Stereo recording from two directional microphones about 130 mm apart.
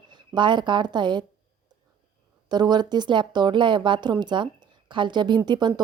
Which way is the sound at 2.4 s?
35° right (ahead or behind).